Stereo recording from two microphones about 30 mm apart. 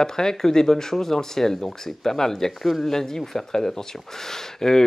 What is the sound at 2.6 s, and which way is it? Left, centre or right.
Speech, centre.